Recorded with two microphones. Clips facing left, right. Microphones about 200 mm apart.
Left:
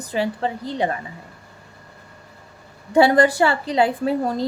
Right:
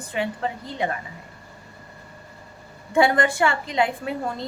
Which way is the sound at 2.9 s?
35° left (ahead or behind).